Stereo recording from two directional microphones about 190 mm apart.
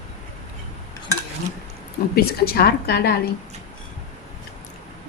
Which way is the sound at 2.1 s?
55° left (ahead or behind).